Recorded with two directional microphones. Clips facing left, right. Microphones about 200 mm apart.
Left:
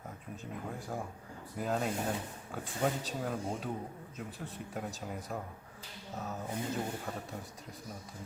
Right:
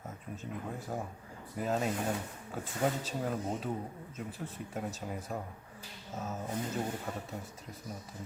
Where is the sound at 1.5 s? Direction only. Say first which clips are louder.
Right 1 dB; centre (ahead or behind).